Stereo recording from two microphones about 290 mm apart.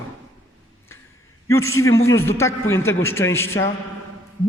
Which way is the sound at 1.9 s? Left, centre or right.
Left.